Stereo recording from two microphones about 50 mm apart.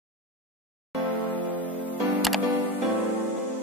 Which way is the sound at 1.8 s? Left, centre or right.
Right.